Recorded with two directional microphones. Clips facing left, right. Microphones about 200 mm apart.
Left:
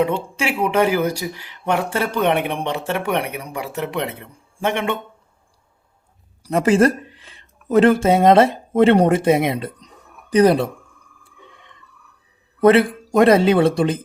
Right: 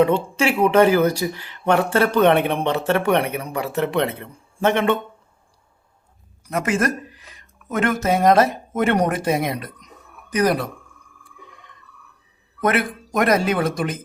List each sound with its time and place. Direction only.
0.0 s speech: 10° left (ahead or behind)
6.4 s speech: 30° left (ahead or behind)
12.5 s speech: 30° left (ahead or behind)